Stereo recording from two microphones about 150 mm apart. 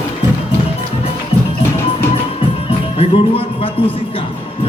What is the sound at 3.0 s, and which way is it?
Jingle bell, 40° left (ahead or behind).